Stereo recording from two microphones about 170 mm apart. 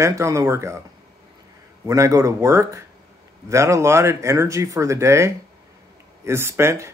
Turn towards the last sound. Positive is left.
turn(degrees=-15)  # may be behind; listen again after turning